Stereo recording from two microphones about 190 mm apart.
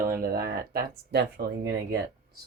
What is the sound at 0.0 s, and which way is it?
Speech, 50° right (ahead or behind).